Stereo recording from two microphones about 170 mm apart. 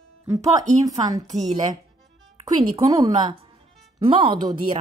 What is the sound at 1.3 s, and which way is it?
Speech, 45° right (ahead or behind).